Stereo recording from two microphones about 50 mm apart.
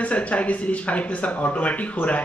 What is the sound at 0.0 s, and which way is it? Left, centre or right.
Speech, left.